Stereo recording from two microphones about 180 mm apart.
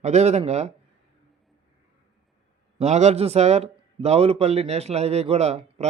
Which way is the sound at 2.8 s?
40° right (ahead or behind).